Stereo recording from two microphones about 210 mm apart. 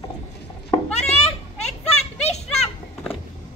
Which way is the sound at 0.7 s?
25° left (ahead or behind).